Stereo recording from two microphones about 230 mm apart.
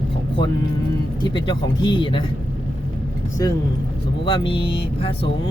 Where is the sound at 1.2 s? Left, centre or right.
Centre.